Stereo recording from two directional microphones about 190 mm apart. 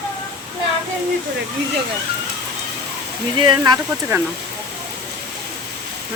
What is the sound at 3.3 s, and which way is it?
Speech, 25° right (ahead or behind).